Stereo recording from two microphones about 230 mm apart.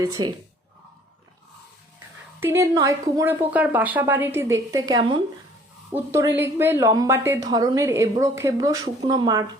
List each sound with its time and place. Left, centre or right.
0.0 s a woman's voice: centre
2.4 s a woman's voice: centre